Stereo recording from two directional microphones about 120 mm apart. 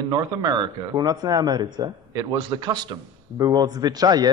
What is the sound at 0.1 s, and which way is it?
Speech, 35° right (ahead or behind).